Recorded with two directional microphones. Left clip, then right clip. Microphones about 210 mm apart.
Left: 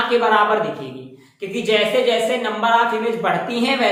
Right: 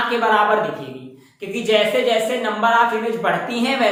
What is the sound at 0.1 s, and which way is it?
A woman's voice, 5° left (ahead or behind).